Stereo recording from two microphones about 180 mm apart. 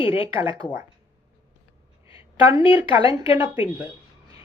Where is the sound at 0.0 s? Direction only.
30° left (ahead or behind).